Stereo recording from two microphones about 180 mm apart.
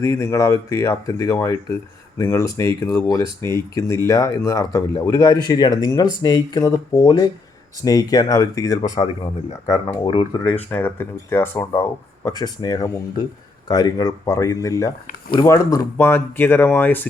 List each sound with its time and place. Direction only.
0.0 s speech: 15° left (ahead or behind)
10.7 s speech: 10° left (ahead or behind)